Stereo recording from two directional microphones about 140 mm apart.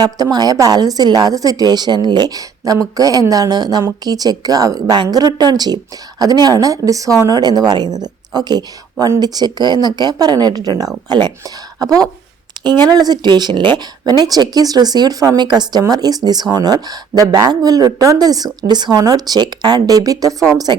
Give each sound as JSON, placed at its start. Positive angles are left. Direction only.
{"t": 0.0, "sound": "speech", "side_deg": -30}